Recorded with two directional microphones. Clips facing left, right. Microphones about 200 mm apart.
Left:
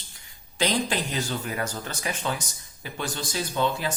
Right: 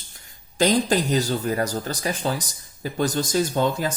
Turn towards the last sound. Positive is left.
turn(degrees=-45)  # may be behind; listen again after turning